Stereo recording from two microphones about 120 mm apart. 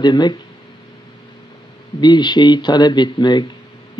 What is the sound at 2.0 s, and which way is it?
Speech, 40° left (ahead or behind).